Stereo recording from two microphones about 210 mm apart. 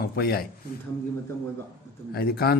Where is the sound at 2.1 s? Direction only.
45° left (ahead or behind).